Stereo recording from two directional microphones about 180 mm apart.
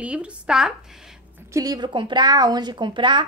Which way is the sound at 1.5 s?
20° right (ahead or behind).